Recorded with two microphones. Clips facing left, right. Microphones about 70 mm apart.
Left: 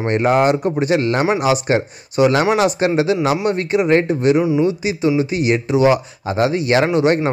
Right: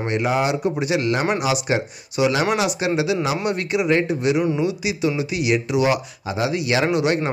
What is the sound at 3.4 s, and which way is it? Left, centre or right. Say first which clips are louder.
Speech: left 4 dB; left.